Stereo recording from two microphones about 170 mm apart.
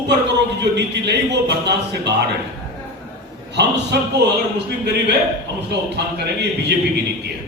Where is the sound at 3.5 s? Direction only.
90° right.